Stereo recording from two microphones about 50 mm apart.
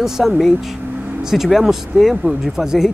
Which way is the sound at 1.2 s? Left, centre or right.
Centre.